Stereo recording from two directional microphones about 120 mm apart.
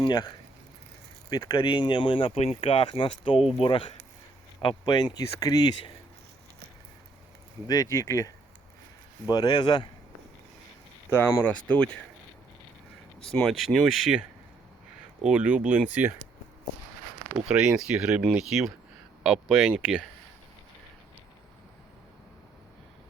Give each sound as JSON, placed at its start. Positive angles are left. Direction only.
{"t": 0.0, "sound": "speech", "side_deg": 35}
{"t": 1.3, "sound": "speech", "side_deg": 35}
{"t": 4.9, "sound": "speech", "side_deg": 35}
{"t": 7.7, "sound": "speech", "side_deg": 30}
{"t": 11.1, "sound": "speech", "side_deg": 20}
{"t": 11.7, "sound": "speech", "side_deg": 10}
{"t": 13.3, "sound": "speech", "side_deg": 0}
{"t": 17.3, "sound": "speech", "side_deg": -5}